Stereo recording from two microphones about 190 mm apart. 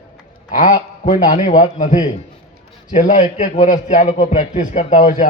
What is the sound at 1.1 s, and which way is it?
A man's voice, 40° left (ahead or behind).